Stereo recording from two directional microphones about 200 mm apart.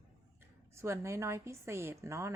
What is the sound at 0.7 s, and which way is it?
A woman's voice, 15° right (ahead or behind).